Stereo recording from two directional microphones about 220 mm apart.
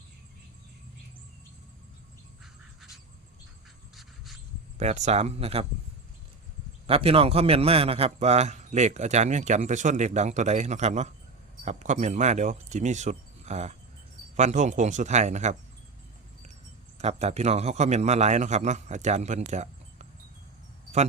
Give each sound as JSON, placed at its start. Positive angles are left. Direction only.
{"t": 4.8, "sound": "speech", "side_deg": -30}
{"t": 6.8, "sound": "a man's voice", "side_deg": -25}
{"t": 17.0, "sound": "a man's voice", "side_deg": -30}
{"t": 19.5, "sound": "cricket", "side_deg": -30}